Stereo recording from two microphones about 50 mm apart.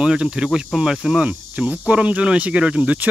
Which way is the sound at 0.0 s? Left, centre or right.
Centre.